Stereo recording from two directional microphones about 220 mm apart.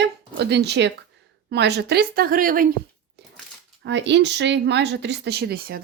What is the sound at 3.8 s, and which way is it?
A woman's voice, 55° right (ahead or behind).